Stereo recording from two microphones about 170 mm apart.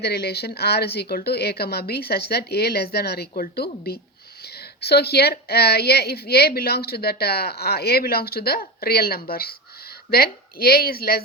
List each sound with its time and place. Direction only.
0.0 s a woman's voice: 70° left (ahead or behind)